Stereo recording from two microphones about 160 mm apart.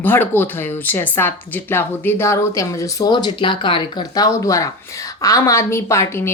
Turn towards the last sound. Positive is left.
turn(degrees=15)  # may be behind; listen again after turning